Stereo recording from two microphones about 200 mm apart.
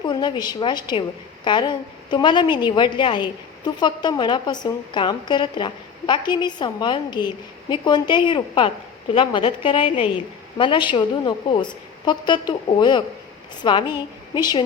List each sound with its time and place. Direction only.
0.0 s a woman's voice: 20° left (ahead or behind)